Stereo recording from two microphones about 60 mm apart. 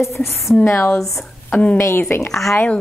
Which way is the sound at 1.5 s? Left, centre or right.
Left.